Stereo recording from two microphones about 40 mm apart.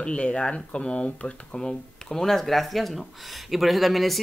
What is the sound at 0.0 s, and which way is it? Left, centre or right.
Speech, left.